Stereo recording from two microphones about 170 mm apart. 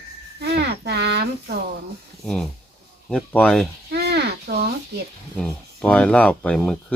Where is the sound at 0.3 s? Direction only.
75° right (ahead or behind).